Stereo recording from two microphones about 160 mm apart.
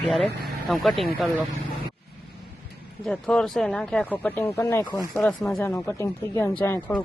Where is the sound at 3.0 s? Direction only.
5° left (ahead or behind).